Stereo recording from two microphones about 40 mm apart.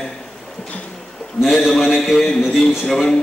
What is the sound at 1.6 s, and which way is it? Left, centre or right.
Speech, centre.